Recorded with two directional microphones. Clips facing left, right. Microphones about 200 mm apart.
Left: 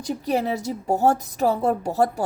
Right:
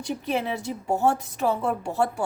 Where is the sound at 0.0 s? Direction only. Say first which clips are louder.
Left 3 dB; 40° left (ahead or behind).